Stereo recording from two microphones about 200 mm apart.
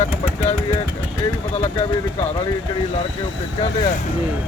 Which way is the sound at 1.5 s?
35° left (ahead or behind).